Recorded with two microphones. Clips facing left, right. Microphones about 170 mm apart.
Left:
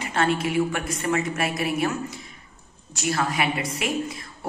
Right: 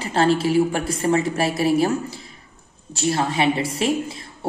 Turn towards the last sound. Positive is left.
turn(degrees=-30)  # may be behind; listen again after turning